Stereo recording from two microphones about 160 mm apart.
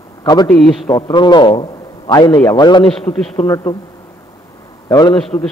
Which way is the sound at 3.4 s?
20° left (ahead or behind).